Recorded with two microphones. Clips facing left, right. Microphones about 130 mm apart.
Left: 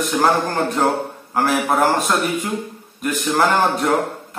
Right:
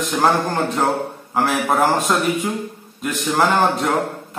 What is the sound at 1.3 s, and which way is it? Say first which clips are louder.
Speech: left 1 dB; centre (ahead or behind).